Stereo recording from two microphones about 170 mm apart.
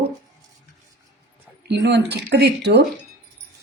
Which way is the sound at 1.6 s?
85° right.